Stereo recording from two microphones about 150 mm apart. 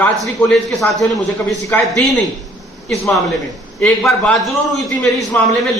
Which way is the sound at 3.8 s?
5° left (ahead or behind).